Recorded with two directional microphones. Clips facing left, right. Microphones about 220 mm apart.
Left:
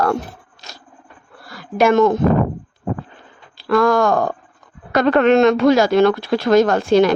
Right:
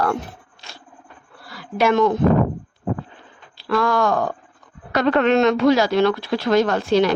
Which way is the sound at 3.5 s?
50° left (ahead or behind).